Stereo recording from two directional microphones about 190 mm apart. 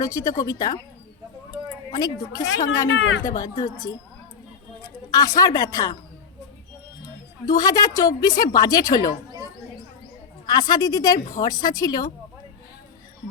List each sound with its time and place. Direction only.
0.0 s a woman's voice: 15° left (ahead or behind)
1.9 s a woman's voice: 20° left (ahead or behind)
2.9 s speech: 90° left
3.3 s a woman's voice: 20° left (ahead or behind)
5.1 s a woman's voice: 20° left (ahead or behind)
7.4 s a woman's voice: 20° left (ahead or behind)
10.4 s a woman's voice: 20° left (ahead or behind)